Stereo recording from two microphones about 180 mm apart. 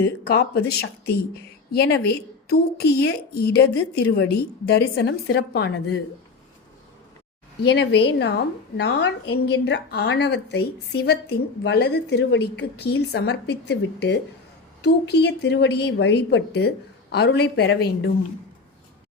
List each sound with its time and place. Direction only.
0.0 s speech: 65° left (ahead or behind)
7.7 s a woman's voice: 70° left (ahead or behind)